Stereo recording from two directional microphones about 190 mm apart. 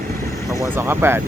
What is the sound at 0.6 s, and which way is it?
Speech, 10° right (ahead or behind).